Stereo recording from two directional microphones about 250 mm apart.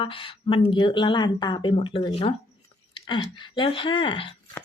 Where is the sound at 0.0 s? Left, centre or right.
Left.